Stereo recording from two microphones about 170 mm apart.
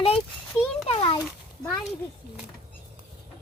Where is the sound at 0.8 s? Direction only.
30° left (ahead or behind).